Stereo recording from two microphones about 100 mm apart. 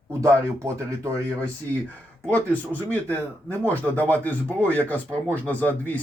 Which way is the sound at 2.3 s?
15° left (ahead or behind).